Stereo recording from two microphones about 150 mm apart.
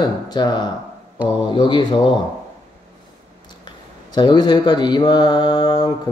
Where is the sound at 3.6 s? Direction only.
30° left (ahead or behind).